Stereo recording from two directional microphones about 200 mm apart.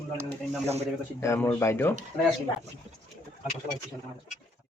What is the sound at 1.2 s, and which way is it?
Speech, 15° left (ahead or behind).